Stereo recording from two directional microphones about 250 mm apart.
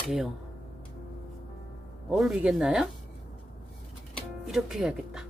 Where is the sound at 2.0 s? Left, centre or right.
Centre.